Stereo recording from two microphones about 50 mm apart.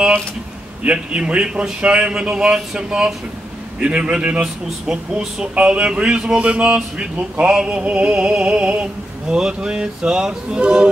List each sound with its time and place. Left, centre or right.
0.8 s speech: right